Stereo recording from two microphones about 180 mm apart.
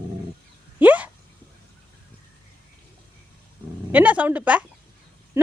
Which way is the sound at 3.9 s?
10° right (ahead or behind).